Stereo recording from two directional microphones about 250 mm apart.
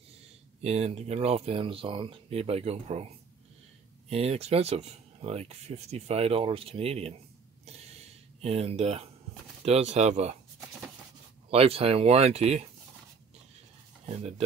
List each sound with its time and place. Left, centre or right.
0.6 s speech: right
4.1 s speech: right
8.4 s speech: right
11.5 s speech: right
14.0 s speech: right